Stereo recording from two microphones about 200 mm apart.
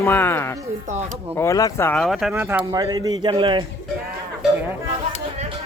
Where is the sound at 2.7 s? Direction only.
20° right (ahead or behind).